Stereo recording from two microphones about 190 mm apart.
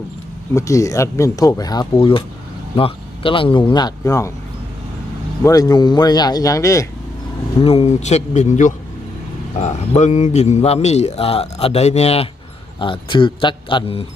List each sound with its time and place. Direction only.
0.5 s speech: 15° left (ahead or behind)
5.4 s speech: 20° left (ahead or behind)
7.6 s a man's voice: 30° left (ahead or behind)